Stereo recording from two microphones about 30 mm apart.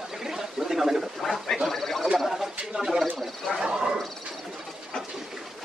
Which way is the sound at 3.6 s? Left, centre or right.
Right.